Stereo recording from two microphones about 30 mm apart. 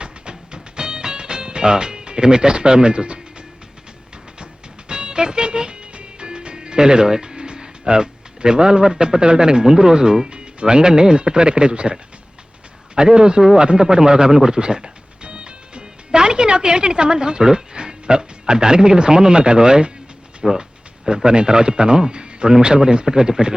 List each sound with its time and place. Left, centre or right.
0.0 s music: right
4.9 s music: right
9.6 s speech: right
13.0 s speech: right
20.4 s speech: centre
21.2 s speech: right